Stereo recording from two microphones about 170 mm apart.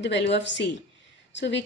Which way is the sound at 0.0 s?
90° left.